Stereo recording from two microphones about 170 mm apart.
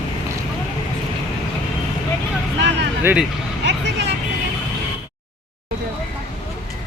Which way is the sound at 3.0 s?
10° right (ahead or behind).